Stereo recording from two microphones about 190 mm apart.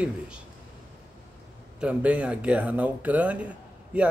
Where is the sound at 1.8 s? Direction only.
5° right (ahead or behind).